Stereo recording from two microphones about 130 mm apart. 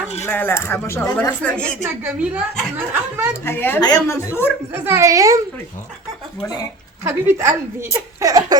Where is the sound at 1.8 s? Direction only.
10° right (ahead or behind).